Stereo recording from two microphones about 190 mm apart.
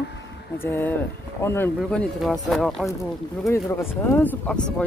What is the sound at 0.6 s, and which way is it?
Speech, 10° left (ahead or behind).